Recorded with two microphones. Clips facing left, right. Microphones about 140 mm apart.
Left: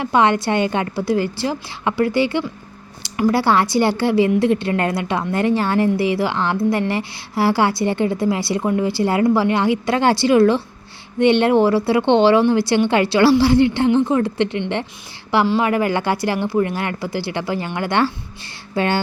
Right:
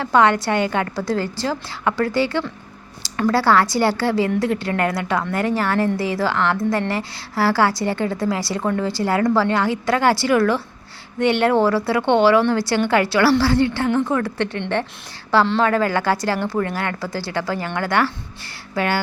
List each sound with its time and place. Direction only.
0.0 s a woman's voice: 20° left (ahead or behind)